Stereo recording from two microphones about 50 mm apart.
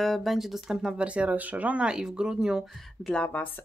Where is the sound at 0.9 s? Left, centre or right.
Right.